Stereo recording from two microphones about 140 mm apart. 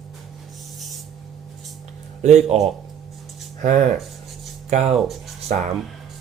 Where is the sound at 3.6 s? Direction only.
60° right (ahead or behind).